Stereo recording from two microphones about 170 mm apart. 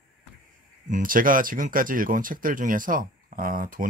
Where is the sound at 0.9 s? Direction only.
55° right (ahead or behind).